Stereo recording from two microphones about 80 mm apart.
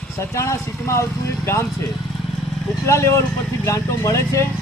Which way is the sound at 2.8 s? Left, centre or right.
Left.